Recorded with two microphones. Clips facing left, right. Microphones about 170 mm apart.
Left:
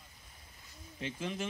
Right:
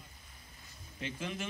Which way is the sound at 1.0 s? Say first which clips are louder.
Left 1 dB; 35° left (ahead or behind).